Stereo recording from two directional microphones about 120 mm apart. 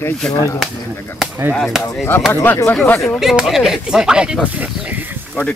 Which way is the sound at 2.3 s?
20° left (ahead or behind).